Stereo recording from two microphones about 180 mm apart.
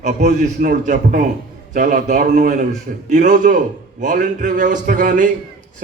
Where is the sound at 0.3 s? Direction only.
45° right (ahead or behind).